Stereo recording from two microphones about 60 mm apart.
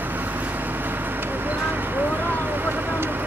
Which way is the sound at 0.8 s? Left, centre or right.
Right.